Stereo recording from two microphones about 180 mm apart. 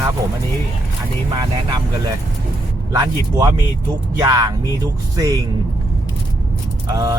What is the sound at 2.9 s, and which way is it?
Speech, 20° right (ahead or behind).